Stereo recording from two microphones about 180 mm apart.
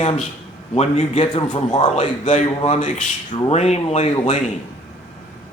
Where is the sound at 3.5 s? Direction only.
35° left (ahead or behind).